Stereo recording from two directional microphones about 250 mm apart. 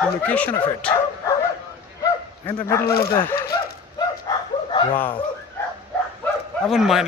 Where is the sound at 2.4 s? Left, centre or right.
Centre.